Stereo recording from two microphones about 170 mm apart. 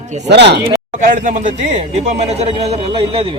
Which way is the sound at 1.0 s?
50° right (ahead or behind).